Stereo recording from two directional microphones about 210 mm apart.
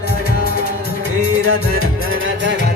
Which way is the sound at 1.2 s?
90° right.